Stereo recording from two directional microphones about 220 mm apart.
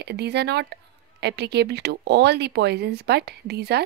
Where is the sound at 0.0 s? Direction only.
50° right (ahead or behind).